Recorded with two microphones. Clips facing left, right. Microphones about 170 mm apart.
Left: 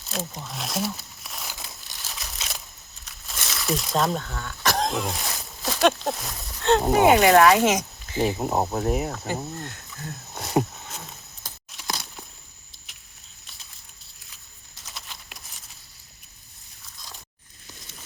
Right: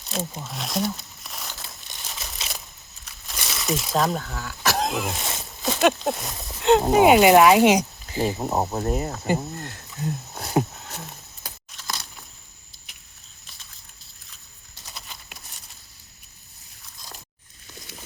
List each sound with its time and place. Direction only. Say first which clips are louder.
0.0 s crumpling: right 2 dB; centre (ahead or behind)
3.1 s speech: right 1 dB; centre (ahead or behind)
6.5 s speech: right 3 dB; 15° right (ahead or behind)
8.2 s speech: even; centre (ahead or behind)
9.9 s speech: right 8 dB; 20° right (ahead or behind)
10.3 s a sound: left 1 dB; centre (ahead or behind)
14.8 s a sound: even; centre (ahead or behind)